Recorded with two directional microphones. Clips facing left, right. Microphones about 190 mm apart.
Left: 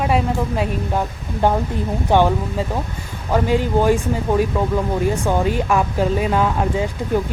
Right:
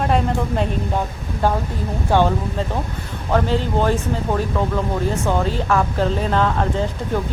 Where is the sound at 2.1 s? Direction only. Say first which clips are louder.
Left 1 dB; 15° left (ahead or behind).